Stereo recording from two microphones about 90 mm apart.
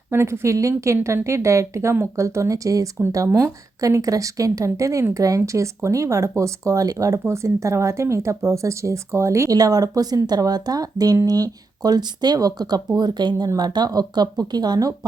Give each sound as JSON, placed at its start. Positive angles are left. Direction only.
{"t": 0.1, "sound": "speech", "side_deg": -30}